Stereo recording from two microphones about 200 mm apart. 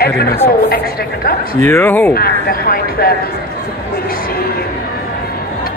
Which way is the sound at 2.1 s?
50° left (ahead or behind).